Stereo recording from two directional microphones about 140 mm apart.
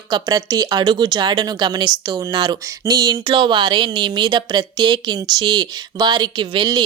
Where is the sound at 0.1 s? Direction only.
25° right (ahead or behind).